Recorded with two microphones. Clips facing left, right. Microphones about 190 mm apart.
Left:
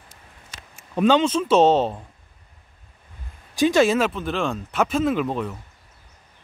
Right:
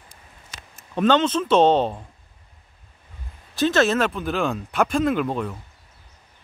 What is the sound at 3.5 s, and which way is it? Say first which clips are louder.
Speech: left 2 dB; 10° left (ahead or behind).